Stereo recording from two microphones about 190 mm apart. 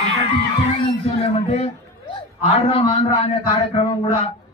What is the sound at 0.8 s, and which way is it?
A man's voice, 30° left (ahead or behind).